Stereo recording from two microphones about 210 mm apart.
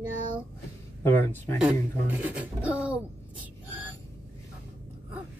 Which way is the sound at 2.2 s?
5° right (ahead or behind).